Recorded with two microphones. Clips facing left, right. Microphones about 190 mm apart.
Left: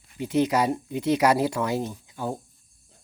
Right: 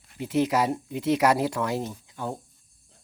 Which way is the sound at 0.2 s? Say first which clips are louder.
Left 1 dB; centre (ahead or behind).